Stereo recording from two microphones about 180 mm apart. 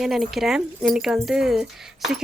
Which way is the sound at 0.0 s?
Centre (ahead or behind).